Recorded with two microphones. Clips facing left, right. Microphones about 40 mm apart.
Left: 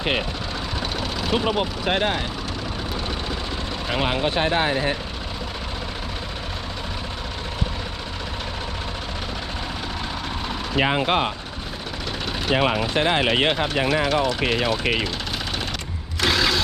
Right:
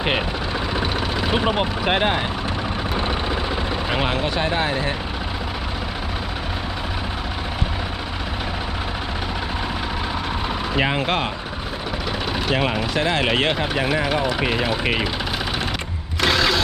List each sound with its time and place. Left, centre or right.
0.0 s speech: centre
3.8 s speech: centre
4.1 s speech: centre
10.8 s speech: centre
12.9 s speech: left
13.5 s speech: centre
13.8 s speech: centre
16.2 s vehicle: centre